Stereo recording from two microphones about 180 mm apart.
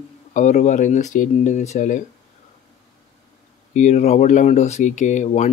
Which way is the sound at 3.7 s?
40° left (ahead or behind).